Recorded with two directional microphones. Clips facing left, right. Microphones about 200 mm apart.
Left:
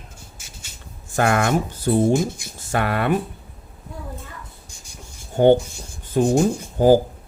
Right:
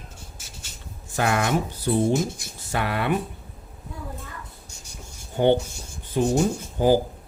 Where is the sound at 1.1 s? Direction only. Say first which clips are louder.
Left 4 dB; 50° left (ahead or behind).